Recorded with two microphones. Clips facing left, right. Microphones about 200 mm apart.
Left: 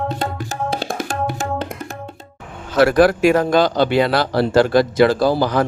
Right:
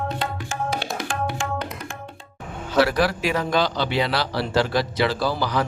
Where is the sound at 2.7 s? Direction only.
50° left (ahead or behind).